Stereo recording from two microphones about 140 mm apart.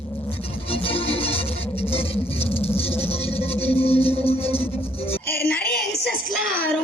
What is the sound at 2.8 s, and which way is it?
Music, 45° left (ahead or behind).